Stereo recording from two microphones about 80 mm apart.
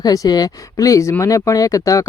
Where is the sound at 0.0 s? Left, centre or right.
Left.